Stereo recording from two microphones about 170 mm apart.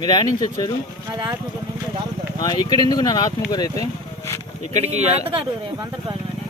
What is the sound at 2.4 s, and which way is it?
Speech, 25° left (ahead or behind).